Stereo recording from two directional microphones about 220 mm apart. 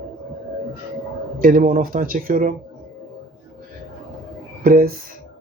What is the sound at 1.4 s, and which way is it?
Speech, 40° right (ahead or behind).